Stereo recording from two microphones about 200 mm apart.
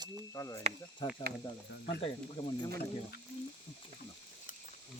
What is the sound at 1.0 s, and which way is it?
Speech, 20° left (ahead or behind).